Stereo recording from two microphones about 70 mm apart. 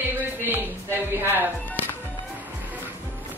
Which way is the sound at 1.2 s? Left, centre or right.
Right.